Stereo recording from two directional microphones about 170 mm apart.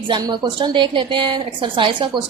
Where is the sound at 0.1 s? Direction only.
25° right (ahead or behind).